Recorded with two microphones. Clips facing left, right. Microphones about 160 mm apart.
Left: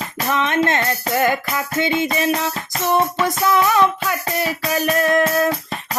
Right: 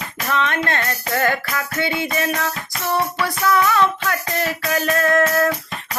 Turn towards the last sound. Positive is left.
turn(degrees=15)  # may be behind; listen again after turning